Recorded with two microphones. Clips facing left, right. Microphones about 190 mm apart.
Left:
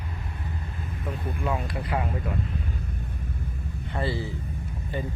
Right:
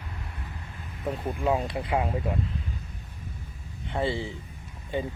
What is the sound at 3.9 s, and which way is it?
Speech, 20° right (ahead or behind).